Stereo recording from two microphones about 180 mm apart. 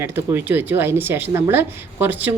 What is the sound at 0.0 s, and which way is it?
Speech, 10° right (ahead or behind).